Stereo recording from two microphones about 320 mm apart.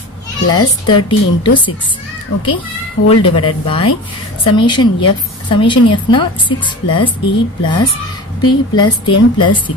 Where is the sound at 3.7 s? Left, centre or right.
Centre.